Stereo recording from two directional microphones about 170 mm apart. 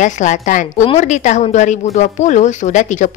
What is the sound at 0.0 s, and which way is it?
A woman's voice, 45° left (ahead or behind).